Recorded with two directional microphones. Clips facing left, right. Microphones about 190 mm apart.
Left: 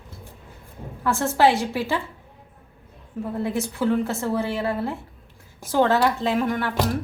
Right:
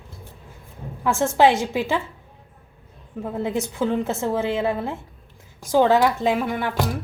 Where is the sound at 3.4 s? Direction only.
20° right (ahead or behind).